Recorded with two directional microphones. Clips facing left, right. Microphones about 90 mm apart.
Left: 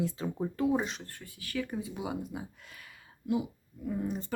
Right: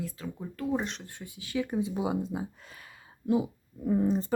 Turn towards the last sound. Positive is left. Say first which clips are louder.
# right 8 dB
turn(degrees=-35)  # may be behind; listen again after turning